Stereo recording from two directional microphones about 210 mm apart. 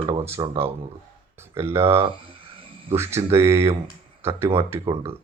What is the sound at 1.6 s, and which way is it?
Speech, 10° right (ahead or behind).